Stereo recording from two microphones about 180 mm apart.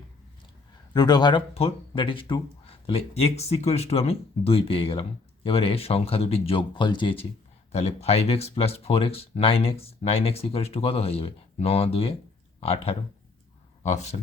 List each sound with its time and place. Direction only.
0.9 s a man's voice: 25° left (ahead or behind); by 14.2 s 40° left (ahead or behind)